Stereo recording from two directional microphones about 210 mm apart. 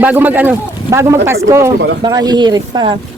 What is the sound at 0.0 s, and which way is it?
A woman's voice, 10° right (ahead or behind).